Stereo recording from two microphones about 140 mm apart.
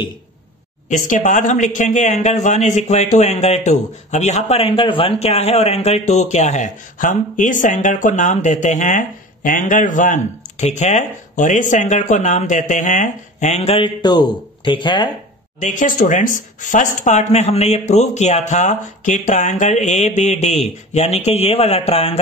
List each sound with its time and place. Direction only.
0.8 s a man's voice: 65° left (ahead or behind); by 5.1 s 40° left (ahead or behind)
5.2 s a man's voice: 50° left (ahead or behind)
13.8 s speech: 30° left (ahead or behind)
15.6 s a man's voice: 65° left (ahead or behind); by 22.2 s 45° left (ahead or behind)